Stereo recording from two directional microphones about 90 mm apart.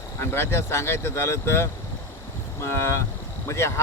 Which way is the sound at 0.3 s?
30° left (ahead or behind).